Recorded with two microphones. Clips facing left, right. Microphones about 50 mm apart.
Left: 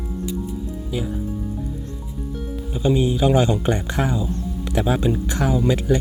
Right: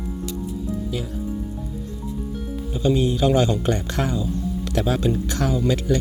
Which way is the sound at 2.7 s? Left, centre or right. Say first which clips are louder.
Left 1 dB; centre.